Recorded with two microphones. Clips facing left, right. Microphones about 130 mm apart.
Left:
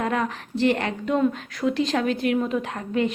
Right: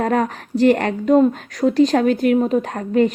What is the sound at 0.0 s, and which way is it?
A woman's voice, 45° right (ahead or behind).